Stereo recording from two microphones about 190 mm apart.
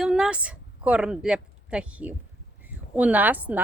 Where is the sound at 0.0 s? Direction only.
5° right (ahead or behind).